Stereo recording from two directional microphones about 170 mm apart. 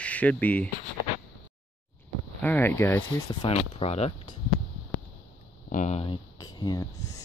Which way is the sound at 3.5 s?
35° left (ahead or behind).